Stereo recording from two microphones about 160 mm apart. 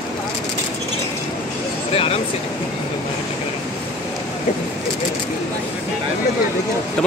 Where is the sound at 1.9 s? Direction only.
35° left (ahead or behind).